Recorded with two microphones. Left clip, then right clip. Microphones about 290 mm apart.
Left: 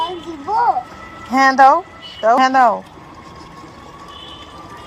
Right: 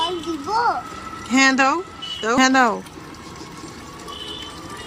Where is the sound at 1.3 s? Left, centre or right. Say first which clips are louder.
Left 7 dB; centre.